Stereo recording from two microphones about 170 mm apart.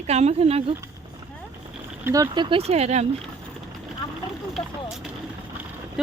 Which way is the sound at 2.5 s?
35° right (ahead or behind).